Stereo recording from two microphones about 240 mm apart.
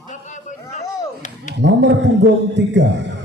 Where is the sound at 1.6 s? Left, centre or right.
Right.